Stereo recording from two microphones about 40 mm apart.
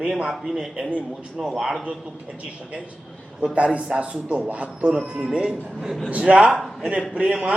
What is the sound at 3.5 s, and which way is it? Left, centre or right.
A man's voice, right.